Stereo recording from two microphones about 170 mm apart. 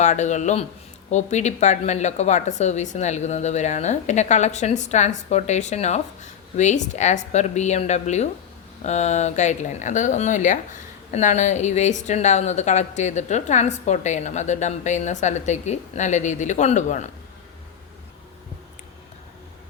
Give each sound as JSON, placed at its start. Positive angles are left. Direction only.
{"t": 0.0, "sound": "speech", "side_deg": 45}